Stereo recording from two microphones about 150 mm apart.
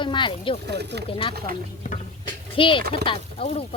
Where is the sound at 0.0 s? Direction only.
30° left (ahead or behind).